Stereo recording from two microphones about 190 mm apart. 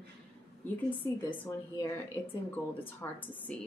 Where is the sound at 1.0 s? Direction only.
15° left (ahead or behind).